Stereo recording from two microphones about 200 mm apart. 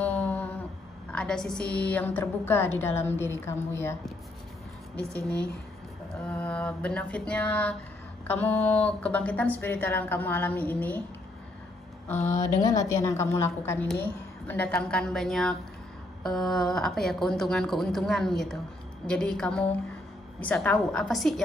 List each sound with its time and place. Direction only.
0.2 s humming: 5° left (ahead or behind)
1.1 s a woman's voice: 5° left (ahead or behind)
4.9 s a woman's voice: 5° left (ahead or behind)
8.5 s mantra: 30° left (ahead or behind)
9.0 s a woman's voice: 5° left (ahead or behind)
12.4 s a woman's voice: 15° left (ahead or behind); by 21.4 s centre (ahead or behind)